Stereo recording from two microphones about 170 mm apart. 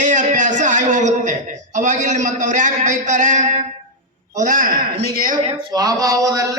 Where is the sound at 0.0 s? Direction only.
45° right (ahead or behind).